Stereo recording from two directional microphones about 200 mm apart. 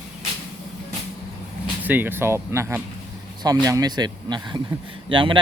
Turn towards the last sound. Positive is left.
turn(degrees=-25)  # may be behind; listen again after turning